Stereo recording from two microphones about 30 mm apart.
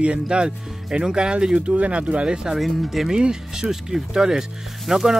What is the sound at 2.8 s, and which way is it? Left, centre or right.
Speech, centre.